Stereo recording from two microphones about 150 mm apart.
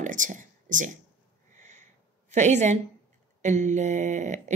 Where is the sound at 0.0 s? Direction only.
60° right (ahead or behind).